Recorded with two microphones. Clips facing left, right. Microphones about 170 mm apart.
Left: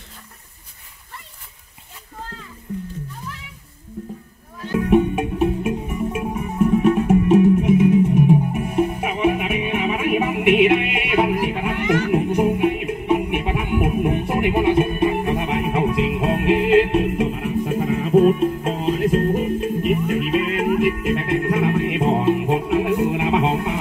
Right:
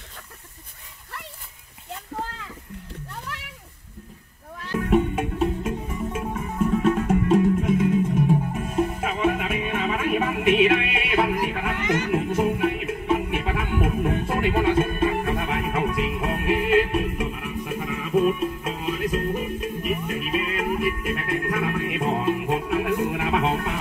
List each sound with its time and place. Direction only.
4.7 s music: 15° left (ahead or behind)